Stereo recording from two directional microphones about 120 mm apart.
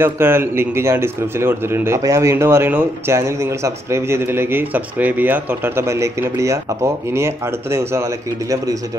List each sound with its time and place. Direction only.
0.0 s a man's voice: 20° right (ahead or behind)